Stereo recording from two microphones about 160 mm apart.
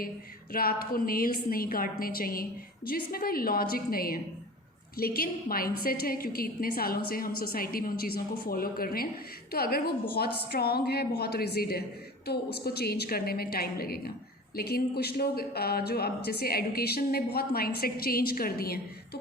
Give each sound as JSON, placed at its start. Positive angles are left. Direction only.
{"t": 0.5, "sound": "a woman's voice", "side_deg": 65}